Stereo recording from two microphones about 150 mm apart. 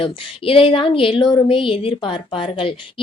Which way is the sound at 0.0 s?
35° left (ahead or behind).